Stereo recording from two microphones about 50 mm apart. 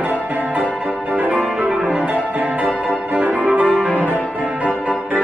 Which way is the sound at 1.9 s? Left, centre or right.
Right.